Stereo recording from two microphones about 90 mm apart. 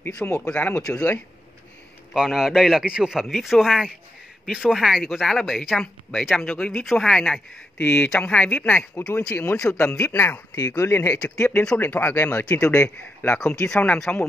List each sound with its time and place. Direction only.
0.3 s speech: 10° left (ahead or behind)
2.1 s speech: 5° right (ahead or behind); by 9.5 s 15° left (ahead or behind)
9.8 s a man's voice: 30° left (ahead or behind)
11.5 s a man's voice: 15° left (ahead or behind)
13.4 s speech: 10° left (ahead or behind)